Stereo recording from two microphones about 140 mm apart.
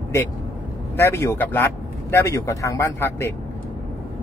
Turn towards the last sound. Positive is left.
turn(degrees=20)  # may be behind; listen again after turning